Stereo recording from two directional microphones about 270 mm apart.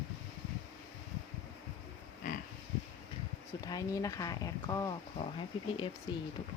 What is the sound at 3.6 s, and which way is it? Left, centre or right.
Speech, centre.